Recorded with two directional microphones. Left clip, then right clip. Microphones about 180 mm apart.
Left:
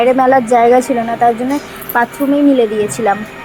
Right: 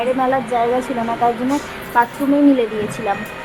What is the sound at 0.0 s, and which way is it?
Speech, 30° left (ahead or behind).